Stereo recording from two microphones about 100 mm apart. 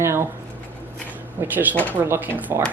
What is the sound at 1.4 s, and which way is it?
Speech, 20° right (ahead or behind).